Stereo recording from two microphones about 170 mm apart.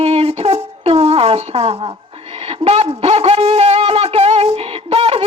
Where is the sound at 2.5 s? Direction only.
35° right (ahead or behind).